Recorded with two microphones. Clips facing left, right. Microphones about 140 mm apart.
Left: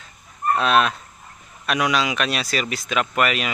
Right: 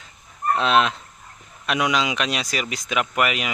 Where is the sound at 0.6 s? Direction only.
20° right (ahead or behind).